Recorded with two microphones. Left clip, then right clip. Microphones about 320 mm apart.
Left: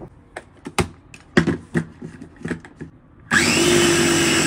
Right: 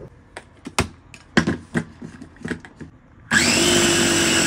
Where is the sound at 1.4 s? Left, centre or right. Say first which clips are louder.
Left 1 dB; centre.